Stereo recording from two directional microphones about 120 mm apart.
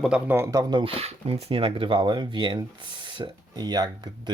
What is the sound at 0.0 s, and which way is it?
Speech, 10° right (ahead or behind).